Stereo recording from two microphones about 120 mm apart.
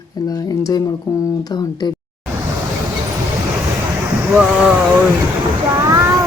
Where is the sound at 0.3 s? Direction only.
30° left (ahead or behind).